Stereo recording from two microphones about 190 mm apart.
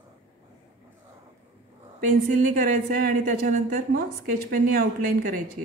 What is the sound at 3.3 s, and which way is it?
A woman's voice, 45° right (ahead or behind).